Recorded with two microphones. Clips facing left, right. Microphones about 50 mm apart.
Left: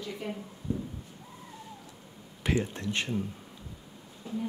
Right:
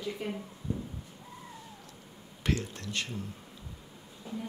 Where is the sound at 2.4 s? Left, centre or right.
Centre.